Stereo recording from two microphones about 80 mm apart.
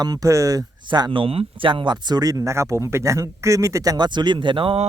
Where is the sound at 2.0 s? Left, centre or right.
Right.